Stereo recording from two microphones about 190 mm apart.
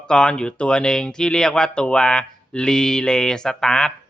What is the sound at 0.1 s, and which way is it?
Speech, 5° left (ahead or behind).